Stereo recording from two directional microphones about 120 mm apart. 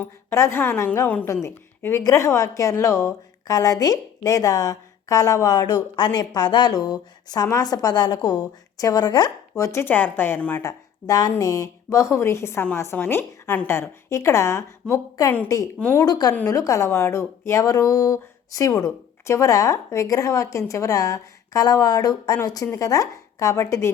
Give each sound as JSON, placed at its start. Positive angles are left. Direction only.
{"t": 0.0, "sound": "a woman's voice", "side_deg": 20}
{"t": 10.6, "sound": "a woman's voice", "side_deg": 25}